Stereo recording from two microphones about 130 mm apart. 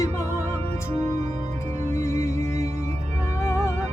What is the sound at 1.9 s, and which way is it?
Music, 25° left (ahead or behind).